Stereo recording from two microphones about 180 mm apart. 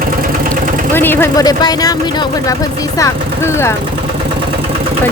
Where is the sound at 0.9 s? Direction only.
10° left (ahead or behind).